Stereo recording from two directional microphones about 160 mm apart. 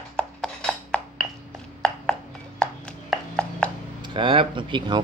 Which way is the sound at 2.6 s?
5° left (ahead or behind).